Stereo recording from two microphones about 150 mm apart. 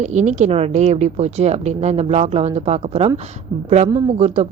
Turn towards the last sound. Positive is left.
turn(degrees=-45)  # may be behind; listen again after turning